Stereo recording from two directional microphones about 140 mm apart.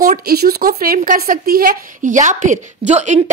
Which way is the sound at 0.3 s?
90° right.